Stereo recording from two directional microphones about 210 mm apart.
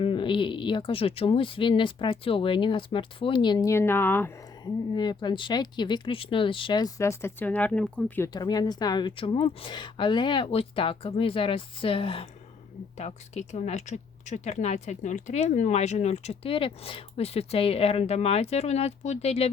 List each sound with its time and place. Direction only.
0.0 s speech: 25° left (ahead or behind)